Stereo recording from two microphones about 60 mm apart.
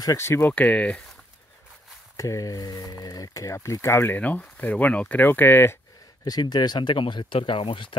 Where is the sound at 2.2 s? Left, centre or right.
Left.